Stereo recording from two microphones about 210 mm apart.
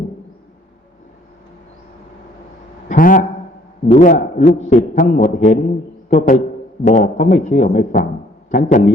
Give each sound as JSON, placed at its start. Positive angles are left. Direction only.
{"t": 2.9, "sound": "a man's voice", "side_deg": 40}